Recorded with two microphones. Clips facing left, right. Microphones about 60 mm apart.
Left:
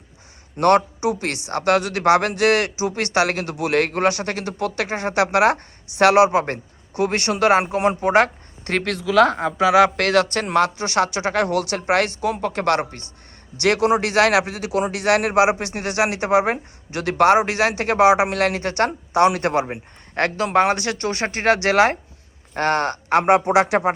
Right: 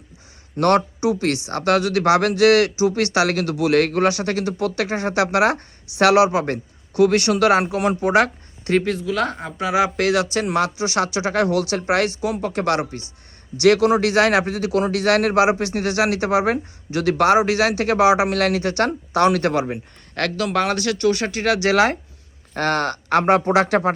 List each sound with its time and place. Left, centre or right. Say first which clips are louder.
0.5 s a woman's voice: left 1 dB; left
8.8 s speech: left 5 dB; left
9.6 s a woman's voice: left 3 dB; left
13.6 s a man's voice: right 3 dB; left
18.9 s a man's voice: left 2 dB; left